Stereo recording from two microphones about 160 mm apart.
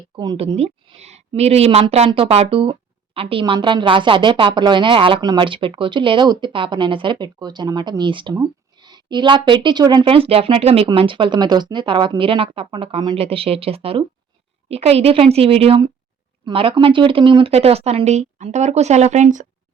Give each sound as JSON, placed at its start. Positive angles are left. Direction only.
{"t": 0.3, "sound": "speech", "side_deg": -40}